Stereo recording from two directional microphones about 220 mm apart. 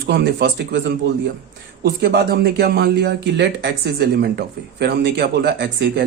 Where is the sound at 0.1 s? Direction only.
50° right (ahead or behind).